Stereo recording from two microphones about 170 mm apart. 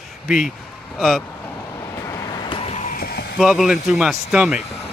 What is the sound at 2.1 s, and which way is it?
Vehicle, 25° left (ahead or behind).